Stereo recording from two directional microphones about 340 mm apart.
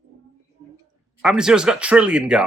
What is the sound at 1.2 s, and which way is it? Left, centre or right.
Speech, centre.